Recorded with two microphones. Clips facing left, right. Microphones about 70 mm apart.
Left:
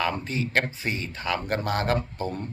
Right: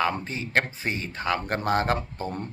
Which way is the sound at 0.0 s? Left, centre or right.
Right.